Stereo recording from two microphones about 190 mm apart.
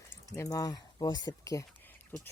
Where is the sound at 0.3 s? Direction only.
20° left (ahead or behind).